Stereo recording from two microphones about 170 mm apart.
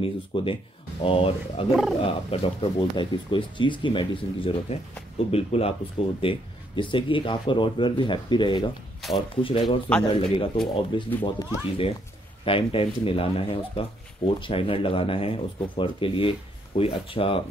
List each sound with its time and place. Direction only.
0.0 s speech: 30° left (ahead or behind)
1.7 s speech: centre (ahead or behind)
2.0 s speech: 35° left (ahead or behind)